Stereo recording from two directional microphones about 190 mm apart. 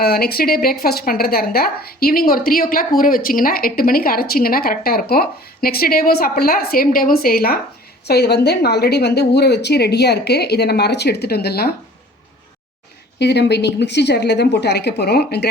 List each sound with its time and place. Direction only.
0.0 s a woman's voice: 55° left (ahead or behind)
13.1 s speech: 60° left (ahead or behind)